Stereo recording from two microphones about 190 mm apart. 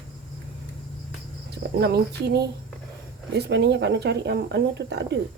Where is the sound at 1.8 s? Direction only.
60° right (ahead or behind).